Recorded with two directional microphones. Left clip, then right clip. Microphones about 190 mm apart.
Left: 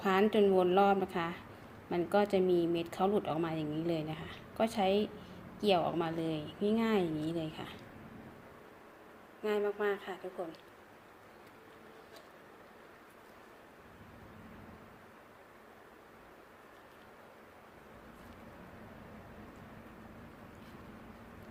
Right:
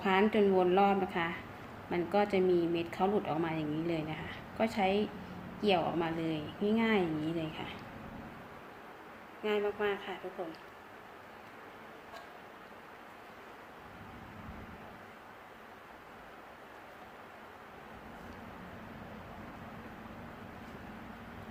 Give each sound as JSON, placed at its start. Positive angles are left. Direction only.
{"t": 0.0, "sound": "speech", "side_deg": 25}
{"t": 9.4, "sound": "speech", "side_deg": 25}